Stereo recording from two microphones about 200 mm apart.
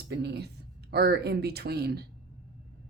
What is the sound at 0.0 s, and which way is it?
Speech, 55° right (ahead or behind).